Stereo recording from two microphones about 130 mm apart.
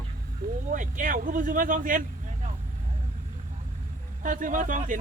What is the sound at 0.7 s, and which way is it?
Speech, 90° right.